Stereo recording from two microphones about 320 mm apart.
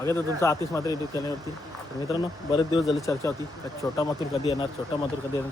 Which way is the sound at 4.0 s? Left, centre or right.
Centre.